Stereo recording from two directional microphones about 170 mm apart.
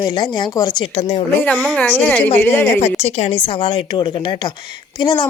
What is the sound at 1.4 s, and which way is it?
A woman's voice, 5° left (ahead or behind).